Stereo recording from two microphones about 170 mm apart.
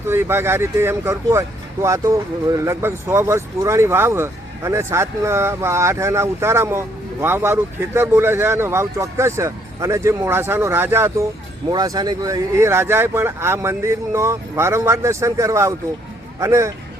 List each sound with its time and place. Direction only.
0.1 s speech: 15° right (ahead or behind)